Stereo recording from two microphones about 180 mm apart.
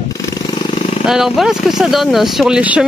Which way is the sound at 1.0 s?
Centre (ahead or behind).